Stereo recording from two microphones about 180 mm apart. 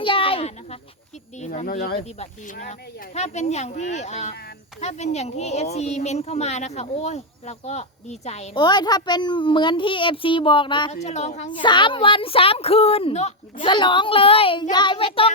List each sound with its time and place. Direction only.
0.0 s a sound: 30° left (ahead or behind)
1.4 s speech: 40° left (ahead or behind)
1.8 s speech: 60° left (ahead or behind)
2.1 s speech: 45° left (ahead or behind)
8.5 s speech: 25° left (ahead or behind)
10.9 s speech: 40° left (ahead or behind)
11.6 s speech: 25° left (ahead or behind)